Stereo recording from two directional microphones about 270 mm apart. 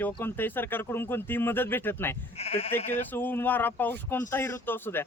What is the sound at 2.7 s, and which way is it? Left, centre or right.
Speech, centre.